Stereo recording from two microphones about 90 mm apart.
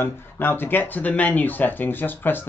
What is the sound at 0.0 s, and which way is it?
Speech, 25° left (ahead or behind).